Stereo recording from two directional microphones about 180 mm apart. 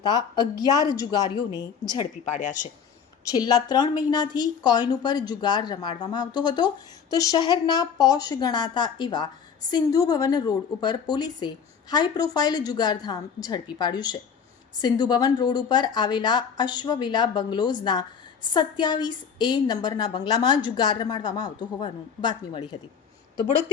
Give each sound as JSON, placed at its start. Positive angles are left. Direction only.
{"t": 0.0, "sound": "speech", "side_deg": 25}
{"t": 2.3, "sound": "speech", "side_deg": 45}
{"t": 3.2, "sound": "speech", "side_deg": 20}